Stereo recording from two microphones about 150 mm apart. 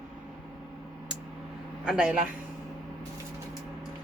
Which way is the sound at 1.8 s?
5° right (ahead or behind).